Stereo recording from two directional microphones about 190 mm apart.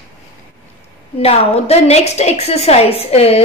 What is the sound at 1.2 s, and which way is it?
A woman's voice, 30° left (ahead or behind).